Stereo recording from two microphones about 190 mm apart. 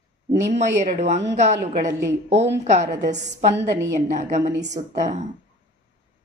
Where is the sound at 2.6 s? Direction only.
35° right (ahead or behind).